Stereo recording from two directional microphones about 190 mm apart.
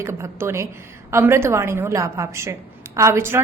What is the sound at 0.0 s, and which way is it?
A woman's voice, 15° right (ahead or behind).